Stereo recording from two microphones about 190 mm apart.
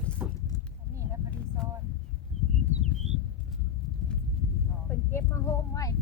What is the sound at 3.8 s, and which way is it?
Horse, centre (ahead or behind).